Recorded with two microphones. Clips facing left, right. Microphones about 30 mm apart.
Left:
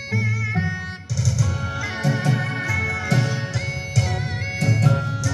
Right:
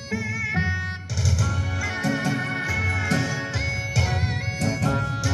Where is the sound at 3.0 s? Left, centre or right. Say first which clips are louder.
Left 2 dB; centre.